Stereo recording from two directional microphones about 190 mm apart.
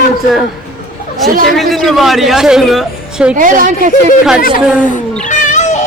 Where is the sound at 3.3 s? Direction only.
45° right (ahead or behind).